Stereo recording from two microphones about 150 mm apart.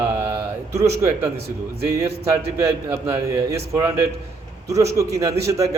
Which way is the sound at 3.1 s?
20° right (ahead or behind).